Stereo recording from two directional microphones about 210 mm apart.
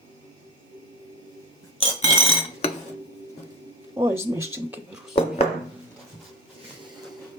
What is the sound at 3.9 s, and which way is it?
Speech, 10° right (ahead or behind).